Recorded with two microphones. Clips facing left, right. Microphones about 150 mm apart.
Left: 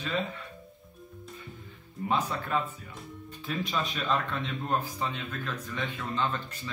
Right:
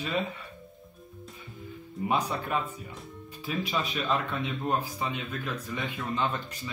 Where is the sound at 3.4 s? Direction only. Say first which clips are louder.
Right 1 dB; 5° right (ahead or behind).